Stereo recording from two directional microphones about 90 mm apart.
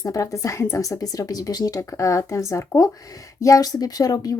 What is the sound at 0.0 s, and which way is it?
Speech, 35° left (ahead or behind).